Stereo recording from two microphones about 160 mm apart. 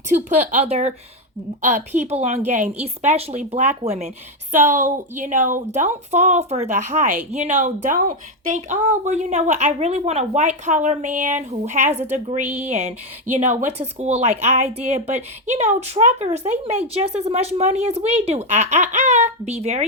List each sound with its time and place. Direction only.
0.1 s a woman's voice: 45° right (ahead or behind)
2.0 s a woman's voice: 40° right (ahead or behind)